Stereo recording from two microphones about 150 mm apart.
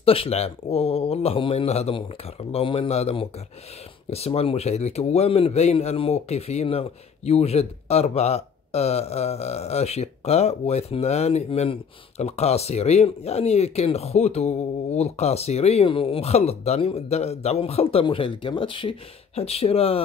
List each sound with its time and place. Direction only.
0.0 s a man's voice: 40° left (ahead or behind)